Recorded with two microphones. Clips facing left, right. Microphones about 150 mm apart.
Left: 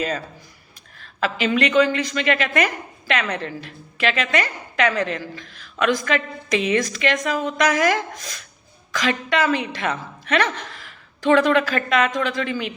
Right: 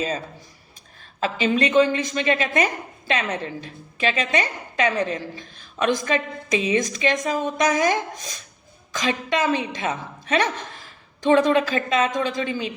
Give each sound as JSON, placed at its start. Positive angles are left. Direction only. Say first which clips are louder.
{"t": 1.2, "sound": "a woman's voice", "louder": "left 1 dB", "side_deg": -25}